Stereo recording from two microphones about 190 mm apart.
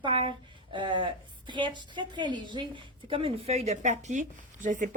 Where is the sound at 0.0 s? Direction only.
30° right (ahead or behind).